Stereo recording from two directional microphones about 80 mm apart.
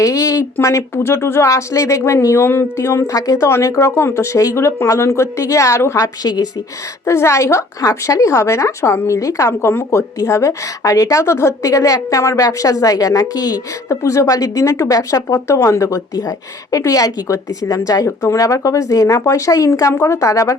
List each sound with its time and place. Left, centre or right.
0.0 s speech: left
6.2 s speech: left
7.0 s a woman's voice: left